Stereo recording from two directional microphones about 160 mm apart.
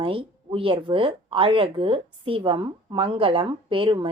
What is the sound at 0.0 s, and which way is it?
A woman's voice, 35° right (ahead or behind).